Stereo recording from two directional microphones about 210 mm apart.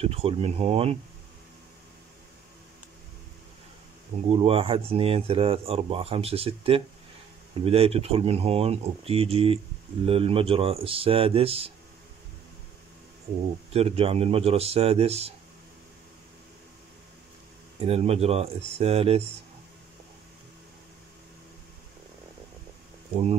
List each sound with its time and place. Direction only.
0.0 s speech: 30° right (ahead or behind)
4.3 s speech: 25° right (ahead or behind)
13.7 s speech: 30° right (ahead or behind)
17.7 s speech: 30° right (ahead or behind)